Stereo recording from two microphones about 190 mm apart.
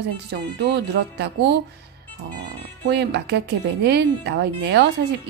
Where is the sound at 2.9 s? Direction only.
60° right (ahead or behind).